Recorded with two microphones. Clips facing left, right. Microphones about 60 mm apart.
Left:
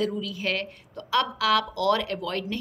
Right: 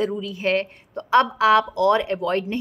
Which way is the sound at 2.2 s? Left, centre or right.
Right.